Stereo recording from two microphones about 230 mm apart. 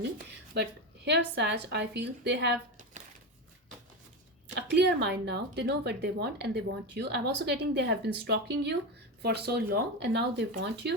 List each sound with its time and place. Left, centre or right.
0.5 s a woman's voice: right
4.5 s a woman's voice: right